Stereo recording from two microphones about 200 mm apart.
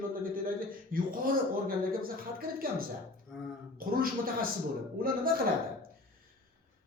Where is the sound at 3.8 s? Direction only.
45° right (ahead or behind).